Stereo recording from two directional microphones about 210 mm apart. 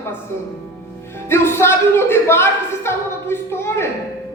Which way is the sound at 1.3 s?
10° left (ahead or behind).